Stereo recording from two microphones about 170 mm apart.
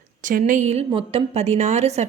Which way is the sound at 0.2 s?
50° right (ahead or behind).